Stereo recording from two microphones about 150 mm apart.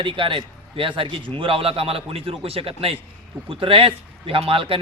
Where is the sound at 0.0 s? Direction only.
35° right (ahead or behind).